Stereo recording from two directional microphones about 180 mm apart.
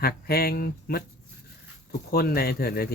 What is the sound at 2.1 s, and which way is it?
Speech, 60° left (ahead or behind).